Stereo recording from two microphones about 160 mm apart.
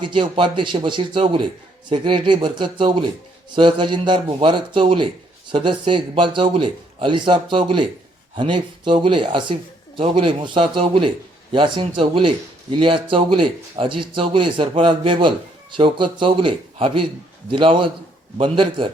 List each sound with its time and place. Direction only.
0.0 s speech: 30° right (ahead or behind)